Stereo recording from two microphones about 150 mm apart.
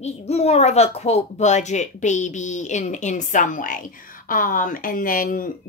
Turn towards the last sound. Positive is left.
turn(degrees=70)  # may be behind; listen again after turning